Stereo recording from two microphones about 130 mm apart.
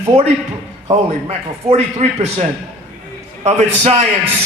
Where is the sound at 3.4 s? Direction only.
55° right (ahead or behind).